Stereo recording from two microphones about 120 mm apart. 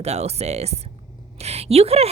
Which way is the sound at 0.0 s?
60° right (ahead or behind).